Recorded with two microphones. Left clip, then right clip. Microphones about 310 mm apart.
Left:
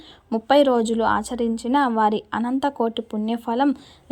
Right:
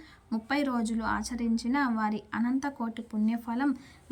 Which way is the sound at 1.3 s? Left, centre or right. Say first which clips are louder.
Left 11 dB; left.